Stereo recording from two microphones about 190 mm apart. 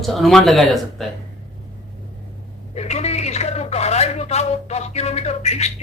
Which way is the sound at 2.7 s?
35° left (ahead or behind).